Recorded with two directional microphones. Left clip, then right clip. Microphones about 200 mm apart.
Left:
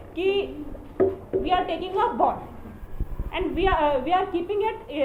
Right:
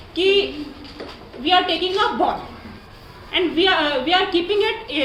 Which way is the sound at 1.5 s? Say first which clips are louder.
Right 9 dB; 30° right (ahead or behind).